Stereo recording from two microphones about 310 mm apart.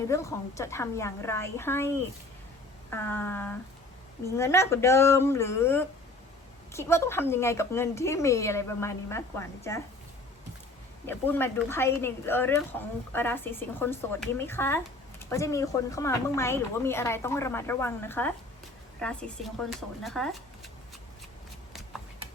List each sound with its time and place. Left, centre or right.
0.1 s speech: centre
2.9 s speech: centre
11.0 s a woman's voice: centre